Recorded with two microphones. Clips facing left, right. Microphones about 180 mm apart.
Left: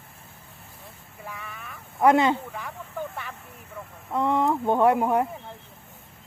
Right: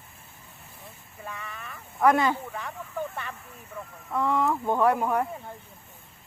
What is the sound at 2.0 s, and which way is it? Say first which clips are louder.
Speech: left 3 dB; 25° left (ahead or behind).